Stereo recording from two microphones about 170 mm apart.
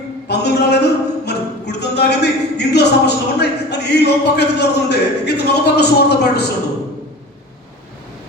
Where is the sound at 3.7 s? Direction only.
80° left.